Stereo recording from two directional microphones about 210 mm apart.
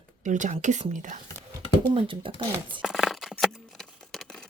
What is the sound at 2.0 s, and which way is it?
Speech, 25° right (ahead or behind).